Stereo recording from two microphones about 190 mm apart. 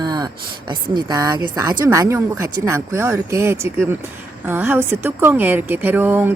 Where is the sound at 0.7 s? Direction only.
25° right (ahead or behind).